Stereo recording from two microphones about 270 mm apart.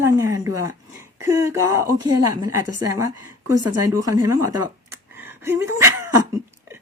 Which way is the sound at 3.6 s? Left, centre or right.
Right.